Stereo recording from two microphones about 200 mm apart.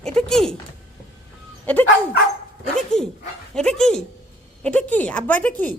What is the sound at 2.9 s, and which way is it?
A woman's voice, centre (ahead or behind).